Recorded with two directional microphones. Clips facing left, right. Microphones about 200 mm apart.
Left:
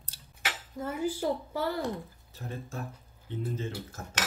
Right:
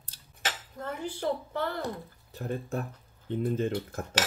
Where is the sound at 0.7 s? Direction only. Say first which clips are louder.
Left 7 dB; 10° left (ahead or behind).